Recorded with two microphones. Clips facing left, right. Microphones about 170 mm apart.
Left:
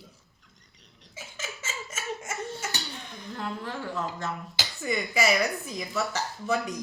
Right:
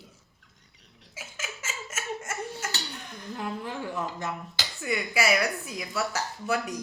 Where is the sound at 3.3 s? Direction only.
15° right (ahead or behind).